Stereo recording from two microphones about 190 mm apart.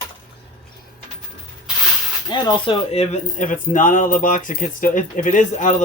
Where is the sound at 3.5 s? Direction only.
45° left (ahead or behind).